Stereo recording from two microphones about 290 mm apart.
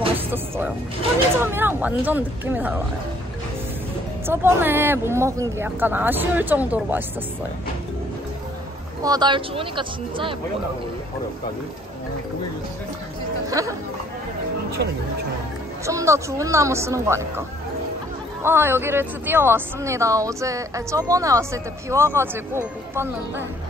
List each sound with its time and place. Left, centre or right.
1.3 s speech: centre
4.3 s speech: centre
9.0 s speech: centre
13.5 s speech: centre
15.8 s speech: centre
18.4 s speech: centre